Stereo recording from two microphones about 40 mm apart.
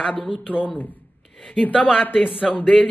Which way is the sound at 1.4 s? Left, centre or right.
Left.